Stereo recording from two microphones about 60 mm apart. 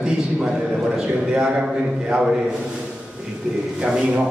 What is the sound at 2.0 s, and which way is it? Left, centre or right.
Speech, centre.